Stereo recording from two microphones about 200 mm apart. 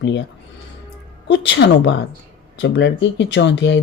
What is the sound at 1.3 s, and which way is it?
Speech, 65° left (ahead or behind).